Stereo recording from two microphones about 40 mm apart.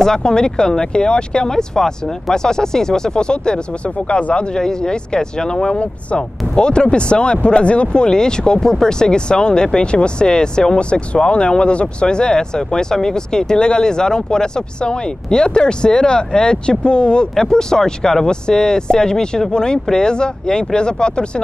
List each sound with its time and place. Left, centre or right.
0.0 s speech: centre
4.6 s speech: centre